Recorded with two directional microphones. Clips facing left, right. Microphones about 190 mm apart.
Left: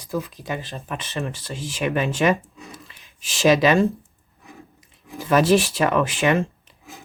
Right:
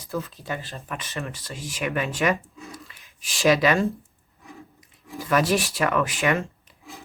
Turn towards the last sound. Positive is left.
turn(degrees=25)  # may be behind; listen again after turning